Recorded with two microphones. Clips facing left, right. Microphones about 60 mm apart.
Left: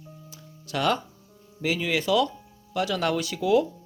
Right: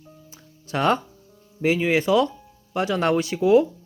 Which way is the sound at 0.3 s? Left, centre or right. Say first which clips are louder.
Right 4 dB; right.